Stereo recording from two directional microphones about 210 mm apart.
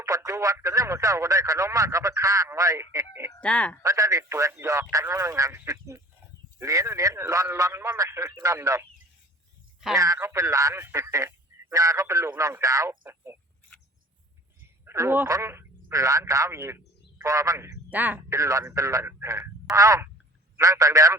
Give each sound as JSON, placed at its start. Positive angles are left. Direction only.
{"t": 0.0, "sound": "speech", "side_deg": -15}
{"t": 3.4, "sound": "speech", "side_deg": 5}
{"t": 3.8, "sound": "speech", "side_deg": -15}
{"t": 9.9, "sound": "speech", "side_deg": -15}
{"t": 14.8, "sound": "speech", "side_deg": -10}